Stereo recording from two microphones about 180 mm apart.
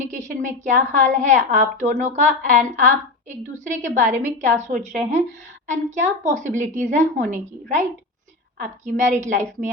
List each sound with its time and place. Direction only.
0.0 s a woman's voice: 45° right (ahead or behind)
8.8 s a woman's voice: 40° right (ahead or behind)